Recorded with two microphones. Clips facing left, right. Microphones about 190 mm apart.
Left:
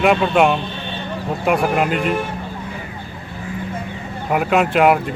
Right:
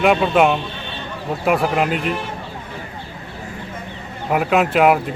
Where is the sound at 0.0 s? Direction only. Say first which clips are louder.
Even; centre (ahead or behind).